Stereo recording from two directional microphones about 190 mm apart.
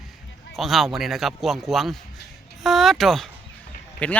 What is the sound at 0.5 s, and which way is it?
Speech, centre (ahead or behind).